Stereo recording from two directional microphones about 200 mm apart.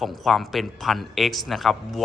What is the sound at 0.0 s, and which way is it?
A man's voice, centre (ahead or behind).